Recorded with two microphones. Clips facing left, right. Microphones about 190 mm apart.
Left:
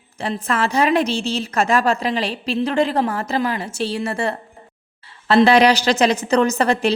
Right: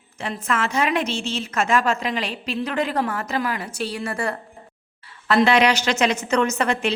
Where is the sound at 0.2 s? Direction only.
35° left (ahead or behind).